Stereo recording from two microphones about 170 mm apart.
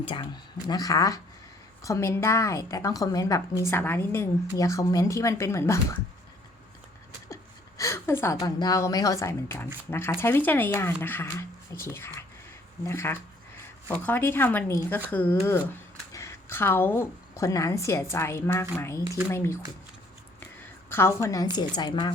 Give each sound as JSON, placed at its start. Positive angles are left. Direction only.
{"t": 0.0, "sound": "a woman's voice", "side_deg": 30}
{"t": 7.8, "sound": "a woman's voice", "side_deg": 15}
{"t": 20.9, "sound": "a woman's voice", "side_deg": 15}